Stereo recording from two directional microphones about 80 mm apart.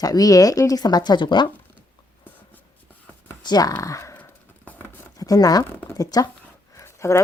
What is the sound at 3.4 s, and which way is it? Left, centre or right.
Speech, left.